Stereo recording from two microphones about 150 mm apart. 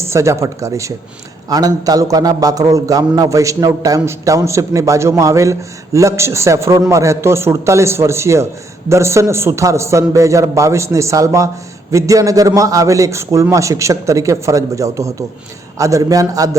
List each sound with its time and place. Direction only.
0.0 s a man's voice: 20° right (ahead or behind)